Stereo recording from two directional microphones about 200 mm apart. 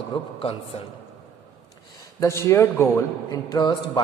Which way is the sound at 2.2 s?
15° left (ahead or behind).